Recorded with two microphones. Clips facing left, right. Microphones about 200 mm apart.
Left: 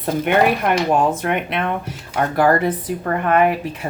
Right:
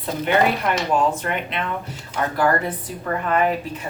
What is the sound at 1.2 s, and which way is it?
Speech, 60° left (ahead or behind).